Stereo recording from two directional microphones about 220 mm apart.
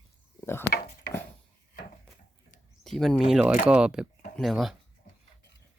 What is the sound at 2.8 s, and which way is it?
Speech, centre (ahead or behind).